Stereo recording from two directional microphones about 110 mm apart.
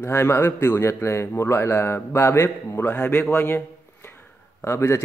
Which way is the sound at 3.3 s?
20° left (ahead or behind).